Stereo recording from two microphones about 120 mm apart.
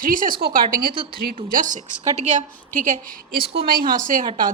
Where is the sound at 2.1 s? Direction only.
85° right.